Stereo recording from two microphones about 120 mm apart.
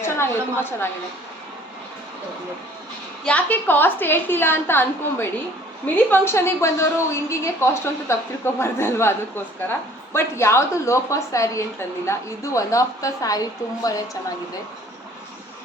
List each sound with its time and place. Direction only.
0.0 s a woman's voice: 20° left (ahead or behind)
3.2 s a woman's voice: 15° left (ahead or behind); by 14.2 s 30° left (ahead or behind)